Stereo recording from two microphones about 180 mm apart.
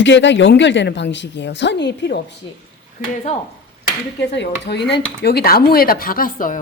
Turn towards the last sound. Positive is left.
turn(degrees=50)  # may be behind; listen again after turning